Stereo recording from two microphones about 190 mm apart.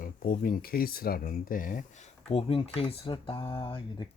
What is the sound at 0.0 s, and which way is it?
Speech, 45° left (ahead or behind).